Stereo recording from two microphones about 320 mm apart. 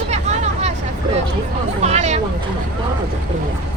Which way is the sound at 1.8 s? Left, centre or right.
Right.